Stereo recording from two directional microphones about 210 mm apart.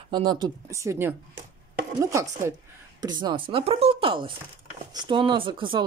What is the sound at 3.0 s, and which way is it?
Speech, 20° right (ahead or behind).